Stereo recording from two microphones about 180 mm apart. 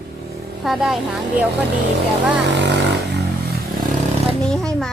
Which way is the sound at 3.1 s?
60° right (ahead or behind).